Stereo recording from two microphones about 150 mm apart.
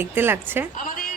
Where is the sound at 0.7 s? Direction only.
65° left (ahead or behind).